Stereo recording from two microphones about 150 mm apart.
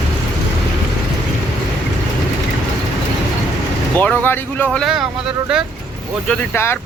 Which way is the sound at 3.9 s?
10° left (ahead or behind).